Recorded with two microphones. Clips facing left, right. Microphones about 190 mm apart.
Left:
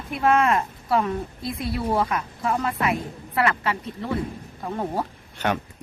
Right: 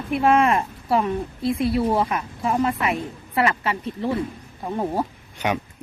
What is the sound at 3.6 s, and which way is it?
Speech, 30° right (ahead or behind).